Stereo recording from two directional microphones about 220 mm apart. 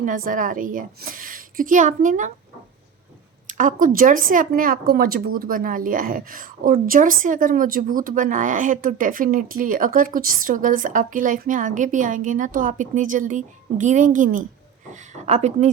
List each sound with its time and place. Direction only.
0.0 s speech: 35° right (ahead or behind)
3.4 s speech: 35° right (ahead or behind)